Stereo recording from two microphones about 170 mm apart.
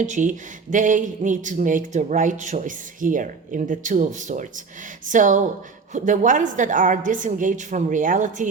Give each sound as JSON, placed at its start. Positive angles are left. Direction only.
{"t": 0.0, "sound": "speech", "side_deg": -45}